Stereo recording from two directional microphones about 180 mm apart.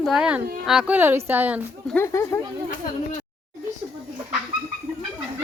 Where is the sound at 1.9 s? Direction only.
15° left (ahead or behind).